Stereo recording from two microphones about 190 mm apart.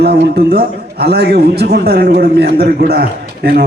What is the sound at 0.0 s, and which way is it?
A man's voice, 55° right (ahead or behind).